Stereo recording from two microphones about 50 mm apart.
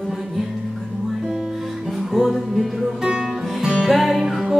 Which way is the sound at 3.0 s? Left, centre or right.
Centre.